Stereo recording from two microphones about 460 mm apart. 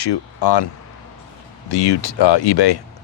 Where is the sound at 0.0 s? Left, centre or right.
Left.